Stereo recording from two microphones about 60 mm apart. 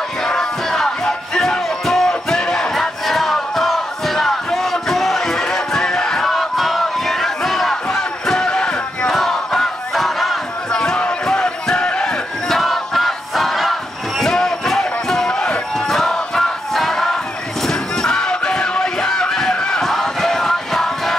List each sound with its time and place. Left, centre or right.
0.2 s music: centre
9.1 s battle cry: centre
10.7 s a sound: centre
11.0 s battle cry: centre
12.4 s crowd: centre
15.9 s music: centre
17.6 s a sound: centre